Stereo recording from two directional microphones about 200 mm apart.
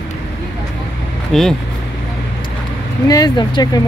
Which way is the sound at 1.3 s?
Centre (ahead or behind).